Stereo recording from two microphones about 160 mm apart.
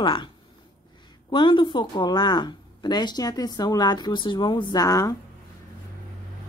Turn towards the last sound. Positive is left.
turn(degrees=20)  # may be behind; listen again after turning